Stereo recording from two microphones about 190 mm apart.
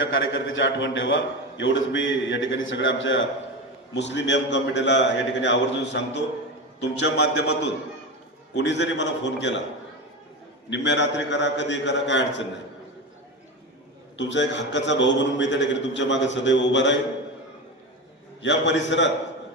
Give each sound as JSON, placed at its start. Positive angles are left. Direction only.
{"t": 0.0, "sound": "a man's voice", "side_deg": 75}
{"t": 3.9, "sound": "a man's voice", "side_deg": 70}
{"t": 8.5, "sound": "a man's voice", "side_deg": 65}
{"t": 10.7, "sound": "a man's voice", "side_deg": 70}
{"t": 14.2, "sound": "a man's voice", "side_deg": 70}
{"t": 18.4, "sound": "a man's voice", "side_deg": 70}